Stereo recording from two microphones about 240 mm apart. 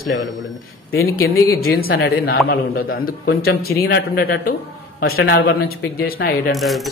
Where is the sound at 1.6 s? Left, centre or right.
Left.